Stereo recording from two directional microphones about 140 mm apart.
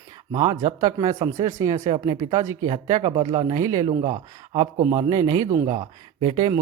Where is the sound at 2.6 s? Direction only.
35° right (ahead or behind).